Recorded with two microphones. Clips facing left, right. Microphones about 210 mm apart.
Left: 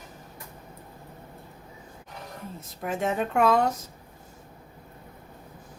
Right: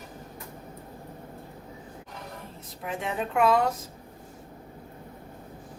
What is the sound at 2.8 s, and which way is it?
Speech, 45° left (ahead or behind).